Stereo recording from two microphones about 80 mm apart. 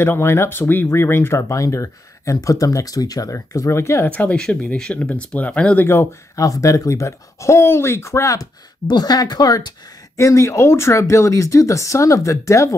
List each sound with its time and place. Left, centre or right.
0.0 s speech: left
4.1 s speech: centre
6.3 s speech: left
8.8 s speech: left
10.1 s speech: left